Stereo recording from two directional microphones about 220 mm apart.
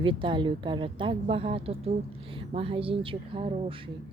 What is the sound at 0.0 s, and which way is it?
A woman's voice, 20° right (ahead or behind).